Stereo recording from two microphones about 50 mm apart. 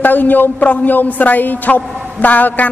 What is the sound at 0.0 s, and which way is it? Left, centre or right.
A man's voice, left.